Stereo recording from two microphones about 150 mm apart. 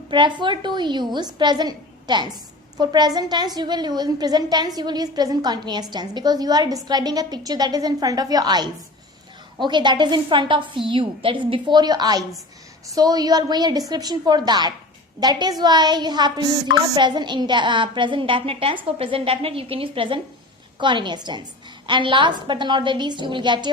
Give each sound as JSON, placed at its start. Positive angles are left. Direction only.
{"t": 0.1, "sound": "a woman's voice", "side_deg": -30}